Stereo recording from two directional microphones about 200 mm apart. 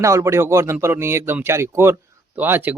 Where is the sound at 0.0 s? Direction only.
15° right (ahead or behind).